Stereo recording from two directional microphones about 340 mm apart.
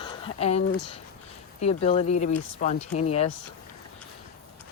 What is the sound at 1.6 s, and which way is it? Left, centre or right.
Speech, centre.